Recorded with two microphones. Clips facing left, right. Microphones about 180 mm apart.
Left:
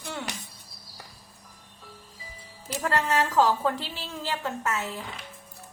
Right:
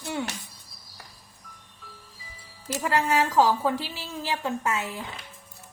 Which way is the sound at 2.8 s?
10° right (ahead or behind).